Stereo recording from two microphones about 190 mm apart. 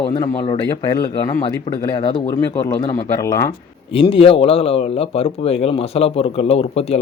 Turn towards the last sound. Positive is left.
turn(degrees=30)  # may be behind; listen again after turning